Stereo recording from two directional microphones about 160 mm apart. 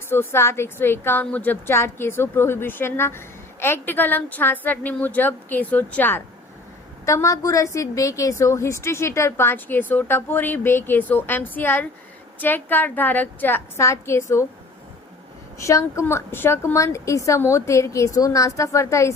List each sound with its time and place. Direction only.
0.1 s a woman's voice: 15° left (ahead or behind)
15.5 s a woman's voice: 20° left (ahead or behind)